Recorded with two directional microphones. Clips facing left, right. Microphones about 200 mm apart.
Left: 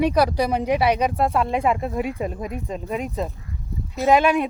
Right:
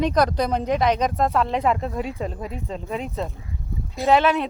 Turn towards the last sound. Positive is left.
turn(degrees=15)  # may be behind; listen again after turning